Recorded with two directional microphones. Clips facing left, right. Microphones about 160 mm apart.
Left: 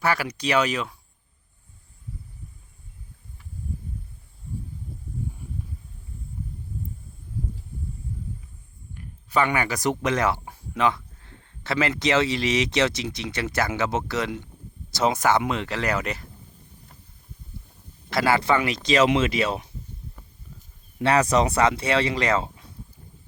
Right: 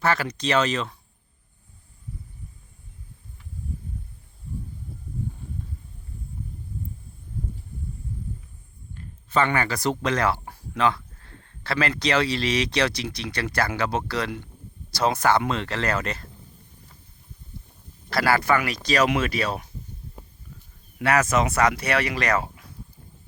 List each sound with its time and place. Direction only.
0.0 s speech: 10° left (ahead or behind)
9.0 s speech: 15° left (ahead or behind)
18.1 s speech: 20° left (ahead or behind)
21.0 s speech: 30° left (ahead or behind)